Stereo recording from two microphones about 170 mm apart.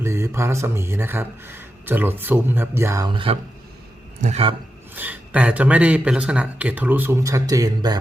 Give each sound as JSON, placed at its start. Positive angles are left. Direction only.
{"t": 0.0, "sound": "speech", "side_deg": -15}
{"t": 3.1, "sound": "speech", "side_deg": -30}
{"t": 4.2, "sound": "a man's voice", "side_deg": -40}
{"t": 4.9, "sound": "speech", "side_deg": -10}